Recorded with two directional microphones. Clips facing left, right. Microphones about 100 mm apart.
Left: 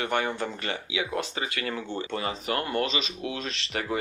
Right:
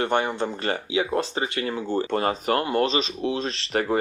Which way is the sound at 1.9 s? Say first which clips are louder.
Right 7 dB; 45° right (ahead or behind).